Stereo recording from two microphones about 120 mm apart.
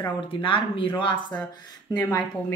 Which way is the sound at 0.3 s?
45° left (ahead or behind).